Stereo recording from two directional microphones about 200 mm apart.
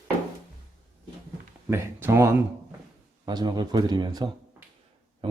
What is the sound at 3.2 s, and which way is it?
Speech, 20° right (ahead or behind).